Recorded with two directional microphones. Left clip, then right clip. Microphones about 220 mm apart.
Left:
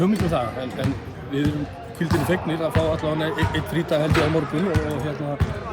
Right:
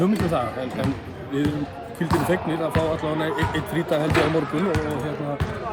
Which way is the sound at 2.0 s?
5° right (ahead or behind).